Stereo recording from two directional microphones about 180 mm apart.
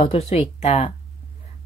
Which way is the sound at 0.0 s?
35° left (ahead or behind).